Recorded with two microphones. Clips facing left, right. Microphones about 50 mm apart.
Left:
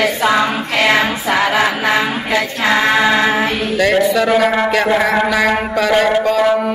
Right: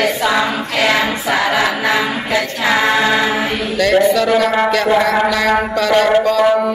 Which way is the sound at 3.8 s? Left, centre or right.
Centre.